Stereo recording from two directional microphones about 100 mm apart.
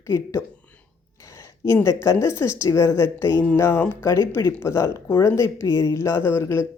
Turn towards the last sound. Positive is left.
turn(degrees=25)  # may be behind; listen again after turning